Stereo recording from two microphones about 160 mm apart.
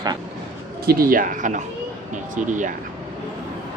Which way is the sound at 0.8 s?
70° right (ahead or behind).